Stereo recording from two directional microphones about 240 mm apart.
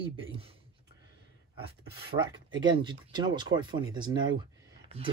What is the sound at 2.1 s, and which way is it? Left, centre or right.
Speech, centre.